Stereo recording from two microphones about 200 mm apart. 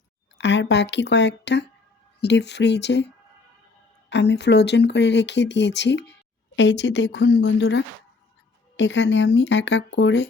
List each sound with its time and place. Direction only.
0.3 s speech: 60° left (ahead or behind)
4.1 s speech: 60° left (ahead or behind)